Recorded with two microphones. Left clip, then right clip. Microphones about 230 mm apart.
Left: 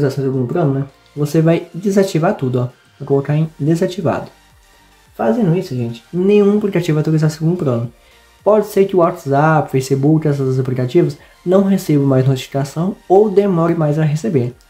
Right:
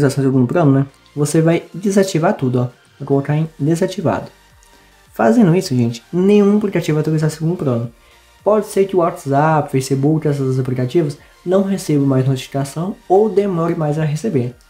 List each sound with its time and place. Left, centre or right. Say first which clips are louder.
0.0 s speech: right 2 dB; centre
5.1 s speech: right 3 dB; right
6.2 s speech: left 1 dB; centre